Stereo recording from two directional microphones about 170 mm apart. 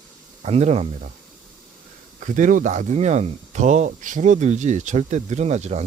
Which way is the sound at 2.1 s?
50° right (ahead or behind).